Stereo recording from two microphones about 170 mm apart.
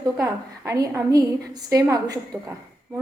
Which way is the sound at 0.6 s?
20° right (ahead or behind).